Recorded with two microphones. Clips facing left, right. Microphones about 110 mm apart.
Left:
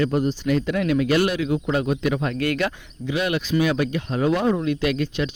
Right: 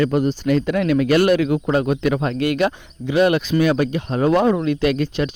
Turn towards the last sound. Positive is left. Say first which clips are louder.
# right 4 dB
turn(degrees=-40)  # may be behind; listen again after turning